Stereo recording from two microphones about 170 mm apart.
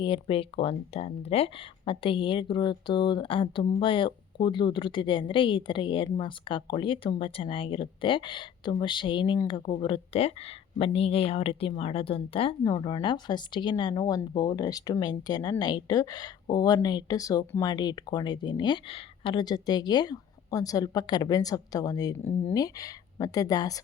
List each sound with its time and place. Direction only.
0.0 s speech: 30° left (ahead or behind)